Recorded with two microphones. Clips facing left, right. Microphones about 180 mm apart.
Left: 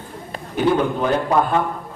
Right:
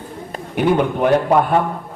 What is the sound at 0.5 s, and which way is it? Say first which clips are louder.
Speech: right 2 dB; 60° right (ahead or behind).